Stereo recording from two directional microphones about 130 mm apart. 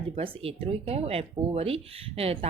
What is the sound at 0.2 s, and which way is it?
Speech, 50° right (ahead or behind).